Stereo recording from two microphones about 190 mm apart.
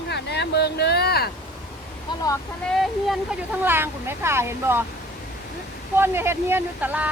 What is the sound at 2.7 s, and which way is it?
Speech, 5° right (ahead or behind).